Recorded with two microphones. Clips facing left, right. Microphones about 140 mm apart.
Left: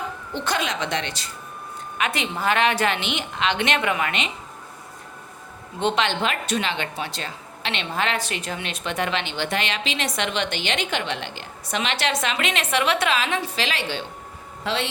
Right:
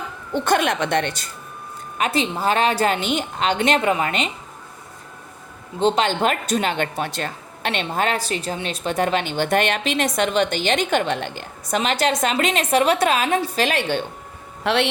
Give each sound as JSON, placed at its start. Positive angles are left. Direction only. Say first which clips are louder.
{"t": 0.3, "sound": "speech", "louder": "right 7 dB", "side_deg": -55}
{"t": 2.0, "sound": "a woman's voice", "louder": "right 4 dB", "side_deg": -30}
{"t": 5.8, "sound": "speech", "louder": "right 4 dB", "side_deg": -40}
{"t": 14.6, "sound": "a man's voice", "louder": "right 6 dB", "side_deg": -65}